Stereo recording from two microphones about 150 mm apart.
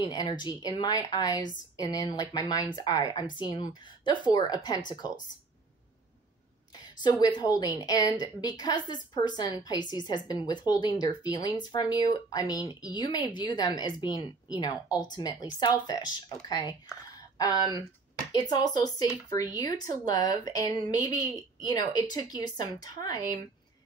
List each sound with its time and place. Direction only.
0.0 s a woman's voice: 25° left (ahead or behind)
7.0 s a woman's voice: 25° left (ahead or behind)
17.6 s speech: 25° right (ahead or behind)
18.3 s a woman's voice: 25° left (ahead or behind)